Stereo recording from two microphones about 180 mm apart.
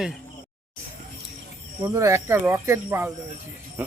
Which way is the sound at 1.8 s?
15° right (ahead or behind).